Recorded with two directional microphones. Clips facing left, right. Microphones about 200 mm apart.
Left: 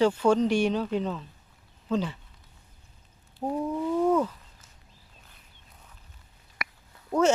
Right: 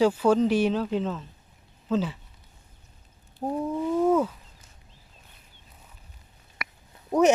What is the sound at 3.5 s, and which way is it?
Wild animals, 5° right (ahead or behind).